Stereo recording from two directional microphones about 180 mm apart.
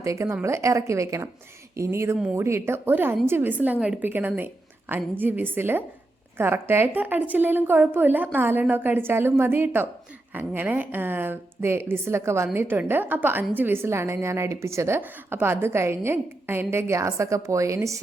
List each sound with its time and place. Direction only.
0.0 s a woman's voice: 15° right (ahead or behind)